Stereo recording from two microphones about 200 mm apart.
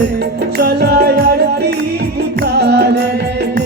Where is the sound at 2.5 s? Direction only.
55° right (ahead or behind).